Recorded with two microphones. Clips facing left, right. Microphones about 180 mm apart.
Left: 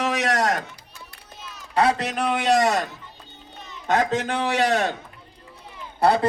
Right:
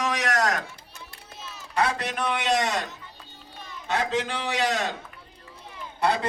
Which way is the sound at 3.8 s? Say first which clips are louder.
Left 5 dB; 50° left (ahead or behind).